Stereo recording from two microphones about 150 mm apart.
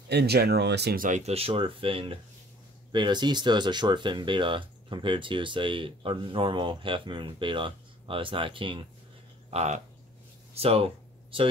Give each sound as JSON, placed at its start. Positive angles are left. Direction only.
{"t": 0.1, "sound": "speech", "side_deg": -90}
{"t": 9.5, "sound": "speech", "side_deg": -45}